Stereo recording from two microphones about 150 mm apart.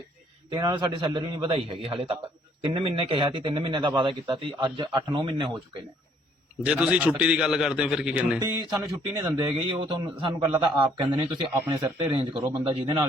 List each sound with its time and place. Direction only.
0.5 s a man's voice: 30° right (ahead or behind)
6.7 s a man's voice: 5° right (ahead or behind)
8.4 s speech: 20° right (ahead or behind)
9.3 s a man's voice: 30° right (ahead or behind)